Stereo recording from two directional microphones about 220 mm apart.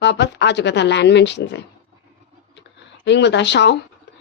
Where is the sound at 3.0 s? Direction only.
50° left (ahead or behind).